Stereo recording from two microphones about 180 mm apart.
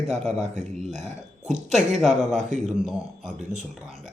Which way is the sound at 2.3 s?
40° right (ahead or behind).